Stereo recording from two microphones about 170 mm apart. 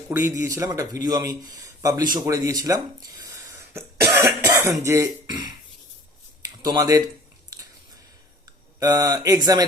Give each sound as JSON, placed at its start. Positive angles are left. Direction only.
{"t": 0.1, "sound": "speech", "side_deg": -15}
{"t": 2.1, "sound": "throat clearing", "side_deg": -20}
{"t": 4.4, "sound": "cough", "side_deg": -15}
{"t": 4.8, "sound": "speech", "side_deg": -15}
{"t": 8.4, "sound": "speech", "side_deg": -20}